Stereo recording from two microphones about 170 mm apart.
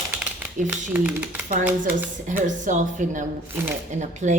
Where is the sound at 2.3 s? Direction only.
50° right (ahead or behind).